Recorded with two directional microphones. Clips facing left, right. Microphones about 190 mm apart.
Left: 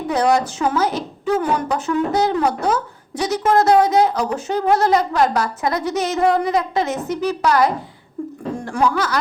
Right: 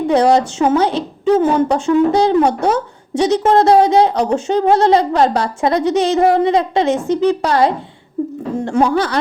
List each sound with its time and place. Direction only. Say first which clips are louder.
0.1 s a woman's voice: right 4 dB; 30° right (ahead or behind)